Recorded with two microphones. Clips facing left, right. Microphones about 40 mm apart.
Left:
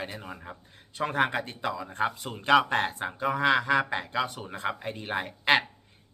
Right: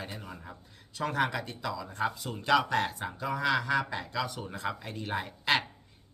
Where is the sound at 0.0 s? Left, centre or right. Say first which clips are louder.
Left 4 dB; left.